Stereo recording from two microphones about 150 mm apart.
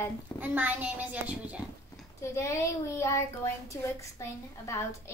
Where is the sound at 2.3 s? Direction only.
20° left (ahead or behind).